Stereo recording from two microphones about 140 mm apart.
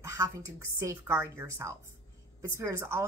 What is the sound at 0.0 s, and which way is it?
A woman's voice, 20° right (ahead or behind).